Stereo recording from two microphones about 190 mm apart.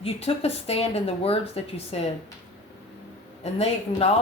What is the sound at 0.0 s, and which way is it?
A woman's voice, 30° left (ahead or behind).